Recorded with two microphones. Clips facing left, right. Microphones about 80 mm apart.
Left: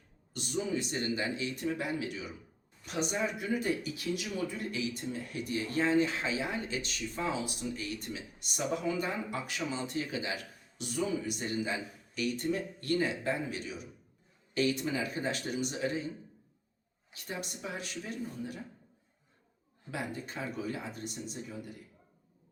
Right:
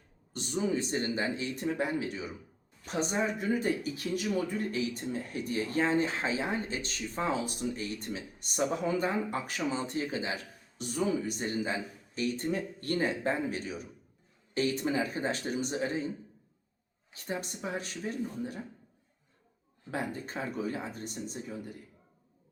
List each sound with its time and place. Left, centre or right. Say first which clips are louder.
0.3 s speech: right 3 dB; right
17.1 s speech: right 4 dB; right
19.9 s speech: right 3 dB; right